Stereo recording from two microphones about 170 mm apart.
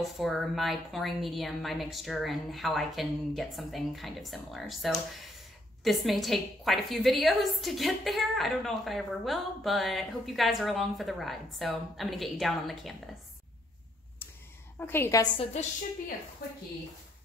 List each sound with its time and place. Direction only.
0.0 s a woman's voice: centre (ahead or behind)
14.8 s a woman's voice: 15° left (ahead or behind)
16.4 s a woman's voice: 65° left (ahead or behind)